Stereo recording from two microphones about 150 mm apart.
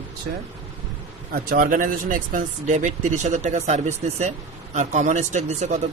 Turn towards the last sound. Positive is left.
turn(degrees=-50)  # may be behind; listen again after turning